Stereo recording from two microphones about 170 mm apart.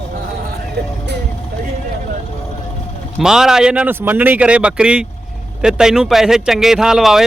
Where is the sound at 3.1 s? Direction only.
5° right (ahead or behind).